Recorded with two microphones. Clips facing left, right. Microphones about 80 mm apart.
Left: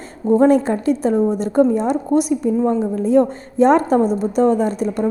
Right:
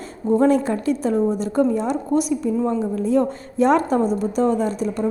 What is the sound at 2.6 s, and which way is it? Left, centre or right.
A woman's voice, left.